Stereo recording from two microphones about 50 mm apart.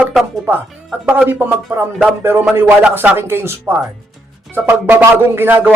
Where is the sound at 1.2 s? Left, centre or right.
Right.